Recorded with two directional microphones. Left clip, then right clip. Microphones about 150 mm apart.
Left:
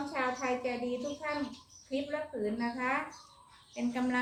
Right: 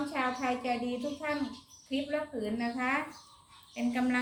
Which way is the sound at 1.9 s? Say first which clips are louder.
Right 2 dB; 25° left (ahead or behind).